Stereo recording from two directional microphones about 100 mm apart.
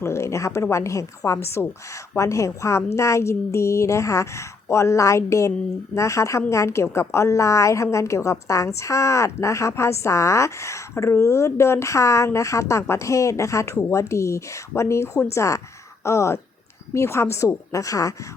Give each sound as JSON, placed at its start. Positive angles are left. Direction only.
{"t": 0.0, "sound": "a woman's voice", "side_deg": 30}